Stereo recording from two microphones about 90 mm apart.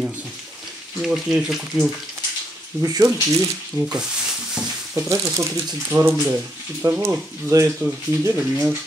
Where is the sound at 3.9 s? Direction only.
5° right (ahead or behind).